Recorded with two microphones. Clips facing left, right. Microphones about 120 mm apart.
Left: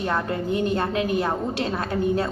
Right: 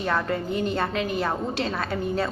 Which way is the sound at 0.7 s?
20° left (ahead or behind).